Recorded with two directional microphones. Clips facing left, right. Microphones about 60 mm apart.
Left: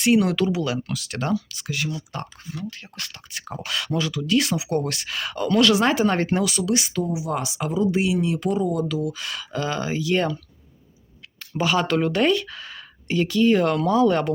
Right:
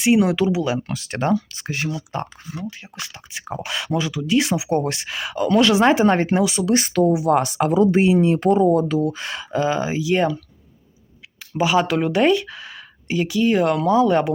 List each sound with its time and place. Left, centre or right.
0.0 s speech: centre
5.5 s speech: right
6.7 s speech: right
6.9 s speech: right
7.9 s speech: right; by 10.3 s centre
11.5 s speech: centre